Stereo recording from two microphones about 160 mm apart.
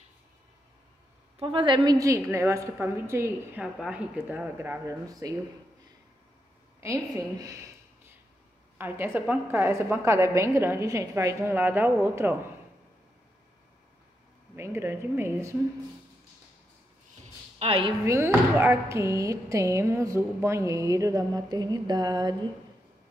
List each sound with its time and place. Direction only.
1.4 s speech: 30° right (ahead or behind); by 3.6 s 15° right (ahead or behind)
3.6 s a woman's voice: 5° right (ahead or behind); by 5.3 s 20° right (ahead or behind)
6.8 s speech: 20° right (ahead or behind)
8.7 s a woman's voice: 15° right (ahead or behind)
14.5 s a woman's voice: 15° right (ahead or behind)
17.6 s a woman's voice: 35° right (ahead or behind)
18.0 s speech: 15° right (ahead or behind)